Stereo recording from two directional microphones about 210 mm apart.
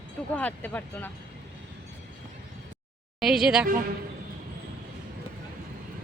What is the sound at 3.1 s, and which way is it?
Speech, centre (ahead or behind).